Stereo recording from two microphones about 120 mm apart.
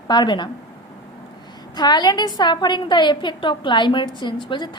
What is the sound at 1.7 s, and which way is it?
A woman's voice, 35° left (ahead or behind).